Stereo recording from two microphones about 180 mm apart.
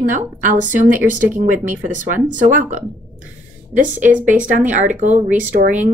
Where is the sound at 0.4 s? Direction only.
45° right (ahead or behind).